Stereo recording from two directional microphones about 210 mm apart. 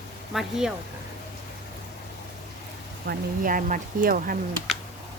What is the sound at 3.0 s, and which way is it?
Speech, 40° right (ahead or behind).